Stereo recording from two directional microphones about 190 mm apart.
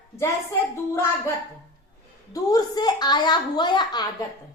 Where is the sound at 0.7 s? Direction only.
15° left (ahead or behind).